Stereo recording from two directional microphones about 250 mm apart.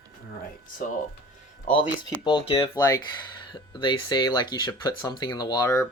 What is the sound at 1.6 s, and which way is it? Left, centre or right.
Speech, centre.